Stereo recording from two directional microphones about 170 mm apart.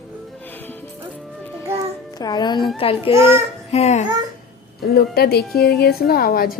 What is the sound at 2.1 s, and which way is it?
Speech, 25° left (ahead or behind).